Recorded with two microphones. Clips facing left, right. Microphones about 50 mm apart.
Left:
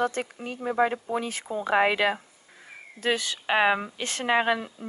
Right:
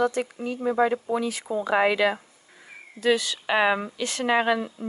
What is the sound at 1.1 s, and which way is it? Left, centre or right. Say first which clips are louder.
Speech: right 3 dB; left.